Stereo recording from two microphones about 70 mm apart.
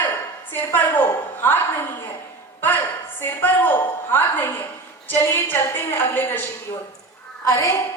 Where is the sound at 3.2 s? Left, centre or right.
Left.